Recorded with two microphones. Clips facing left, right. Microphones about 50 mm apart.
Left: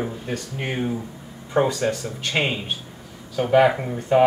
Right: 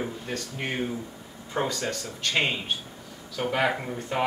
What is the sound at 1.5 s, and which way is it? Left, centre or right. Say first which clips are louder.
Speech: left 8 dB; centre.